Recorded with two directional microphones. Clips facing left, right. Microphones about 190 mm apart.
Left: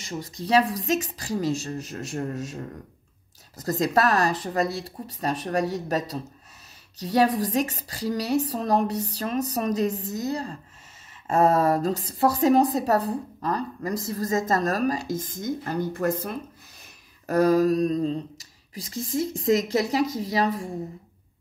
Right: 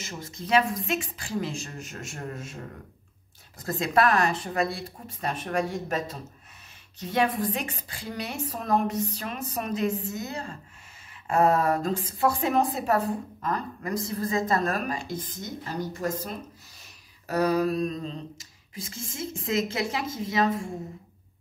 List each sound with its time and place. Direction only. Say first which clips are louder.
0.0 s a woman's voice: left 5 dB; 35° left (ahead or behind); by 16.3 s 60° left (ahead or behind)
17.3 s a woman's voice: left 5 dB; 45° left (ahead or behind)